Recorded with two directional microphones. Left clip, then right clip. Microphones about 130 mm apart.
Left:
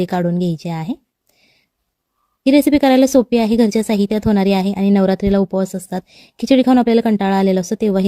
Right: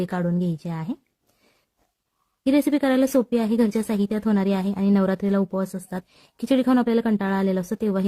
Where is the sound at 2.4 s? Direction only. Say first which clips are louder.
Left 8 dB; 35° left (ahead or behind).